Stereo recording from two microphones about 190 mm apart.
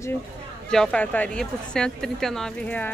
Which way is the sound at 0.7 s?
5° left (ahead or behind).